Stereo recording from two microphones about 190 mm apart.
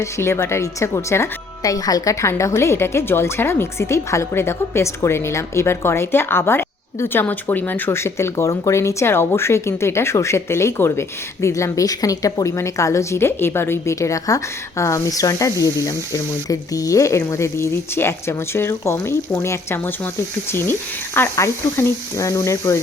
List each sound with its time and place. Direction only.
0.0 s speech: 15° left (ahead or behind)